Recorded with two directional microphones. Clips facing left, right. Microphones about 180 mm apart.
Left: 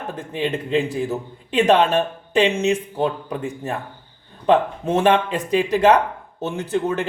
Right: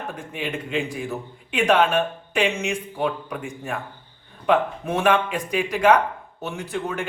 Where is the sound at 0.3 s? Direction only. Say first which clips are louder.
Left 6 dB; 30° left (ahead or behind).